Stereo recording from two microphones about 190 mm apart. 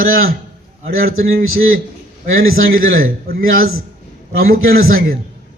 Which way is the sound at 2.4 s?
90° right.